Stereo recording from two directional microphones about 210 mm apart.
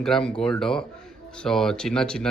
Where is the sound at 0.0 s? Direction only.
5° left (ahead or behind).